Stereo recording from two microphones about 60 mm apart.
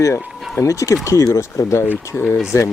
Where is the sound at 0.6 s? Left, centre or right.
Left.